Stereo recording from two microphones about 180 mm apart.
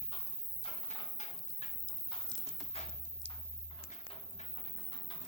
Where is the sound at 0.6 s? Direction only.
35° left (ahead or behind).